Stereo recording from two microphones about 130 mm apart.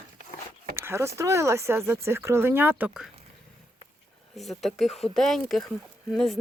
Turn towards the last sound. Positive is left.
turn(degrees=0)  # may be behind; listen again after turning